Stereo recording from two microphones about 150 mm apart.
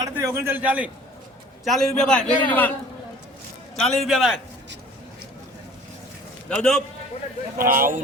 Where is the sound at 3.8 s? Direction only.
Centre (ahead or behind).